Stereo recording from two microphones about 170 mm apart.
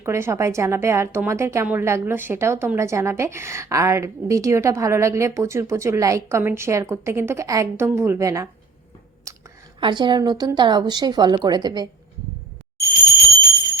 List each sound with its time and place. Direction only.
0.0 s a woman's voice: 15° right (ahead or behind)
9.3 s a sound: 20° right (ahead or behind)
9.8 s a woman's voice: 25° right (ahead or behind)